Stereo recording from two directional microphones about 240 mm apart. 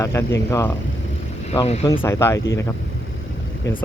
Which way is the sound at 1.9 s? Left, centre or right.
Centre.